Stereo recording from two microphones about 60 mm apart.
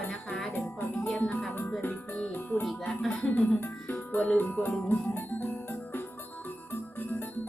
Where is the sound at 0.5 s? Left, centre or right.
Left.